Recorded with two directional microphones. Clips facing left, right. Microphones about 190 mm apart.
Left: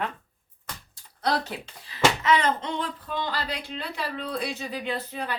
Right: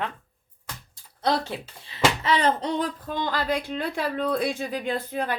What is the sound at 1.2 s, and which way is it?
Speech, 25° right (ahead or behind).